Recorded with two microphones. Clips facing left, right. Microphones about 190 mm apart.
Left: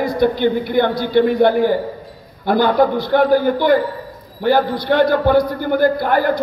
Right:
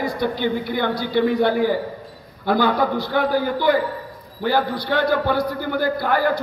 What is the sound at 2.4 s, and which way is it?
A man's voice, 50° left (ahead or behind).